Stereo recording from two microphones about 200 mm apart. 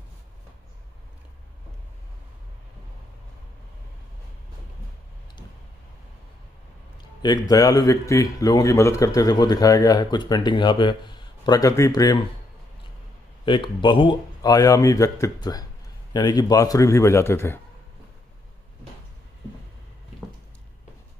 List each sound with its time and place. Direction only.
7.0 s a man's voice: 20° left (ahead or behind)
13.5 s a man's voice: 25° left (ahead or behind)